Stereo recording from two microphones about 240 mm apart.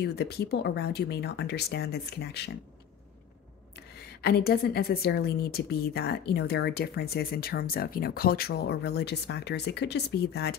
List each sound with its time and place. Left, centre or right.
0.0 s speech: left
3.7 s a woman's voice: left